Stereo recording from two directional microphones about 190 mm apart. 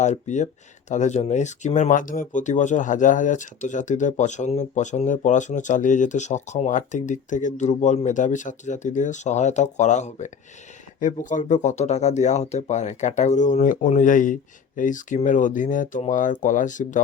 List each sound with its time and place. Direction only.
0.0 s speech: 40° left (ahead or behind)